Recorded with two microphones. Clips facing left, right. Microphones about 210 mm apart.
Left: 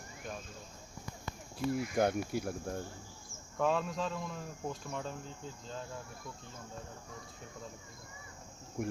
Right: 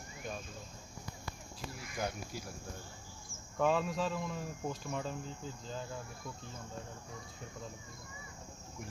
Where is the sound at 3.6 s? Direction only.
Centre (ahead or behind).